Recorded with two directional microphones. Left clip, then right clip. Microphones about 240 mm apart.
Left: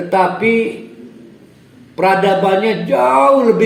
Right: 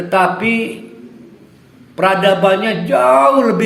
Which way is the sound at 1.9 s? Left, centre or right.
Right.